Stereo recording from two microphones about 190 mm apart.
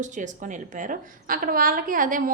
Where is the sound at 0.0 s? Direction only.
40° right (ahead or behind).